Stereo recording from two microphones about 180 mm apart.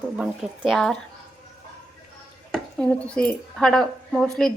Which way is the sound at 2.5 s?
5° left (ahead or behind).